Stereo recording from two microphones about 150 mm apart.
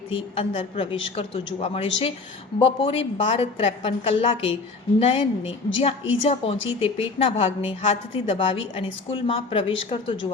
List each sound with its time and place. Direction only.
0.3 s a woman's voice: 35° left (ahead or behind)